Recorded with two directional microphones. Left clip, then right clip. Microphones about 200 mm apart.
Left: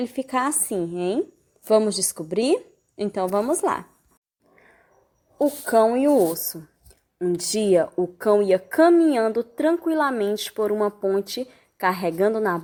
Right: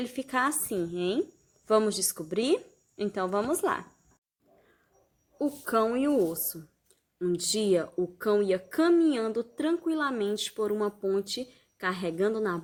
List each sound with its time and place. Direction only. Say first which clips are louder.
0.0 s speech: left 5 dB; 20° left (ahead or behind)
5.4 s a woman's voice: left 9 dB; 5° left (ahead or behind)
7.2 s a woman's voice: left 5 dB; centre (ahead or behind)